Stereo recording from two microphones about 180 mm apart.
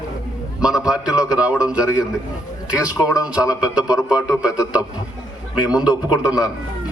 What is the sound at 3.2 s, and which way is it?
A man's voice, 5° right (ahead or behind).